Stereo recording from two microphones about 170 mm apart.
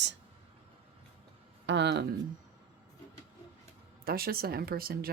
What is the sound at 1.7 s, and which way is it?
Speech, 85° right.